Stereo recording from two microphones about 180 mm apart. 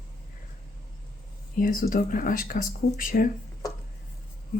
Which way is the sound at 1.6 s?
50° left (ahead or behind).